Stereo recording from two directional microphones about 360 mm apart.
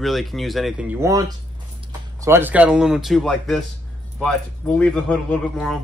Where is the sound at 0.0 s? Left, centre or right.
Centre.